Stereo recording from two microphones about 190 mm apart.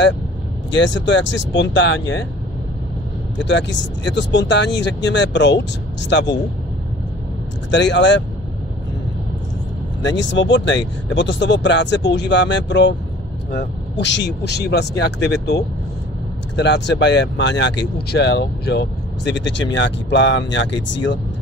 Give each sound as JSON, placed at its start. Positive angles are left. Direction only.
{"t": 0.7, "sound": "speech", "side_deg": 70}
{"t": 3.4, "sound": "speech", "side_deg": 70}
{"t": 7.7, "sound": "speech", "side_deg": 70}
{"t": 10.0, "sound": "speech", "side_deg": 70}